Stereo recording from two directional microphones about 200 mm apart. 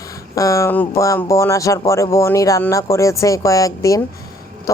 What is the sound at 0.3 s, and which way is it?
Speech, 15° left (ahead or behind).